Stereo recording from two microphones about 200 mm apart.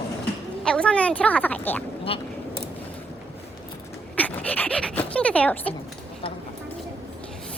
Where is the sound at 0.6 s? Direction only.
5° left (ahead or behind).